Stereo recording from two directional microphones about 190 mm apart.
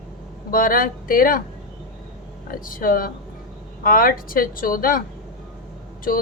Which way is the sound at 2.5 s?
45° left (ahead or behind).